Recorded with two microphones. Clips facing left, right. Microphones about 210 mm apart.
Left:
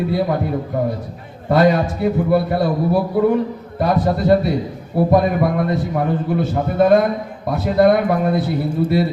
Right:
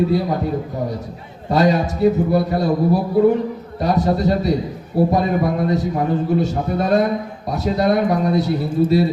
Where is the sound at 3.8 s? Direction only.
55° left (ahead or behind).